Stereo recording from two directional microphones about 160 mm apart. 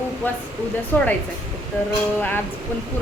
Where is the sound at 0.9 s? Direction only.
15° left (ahead or behind).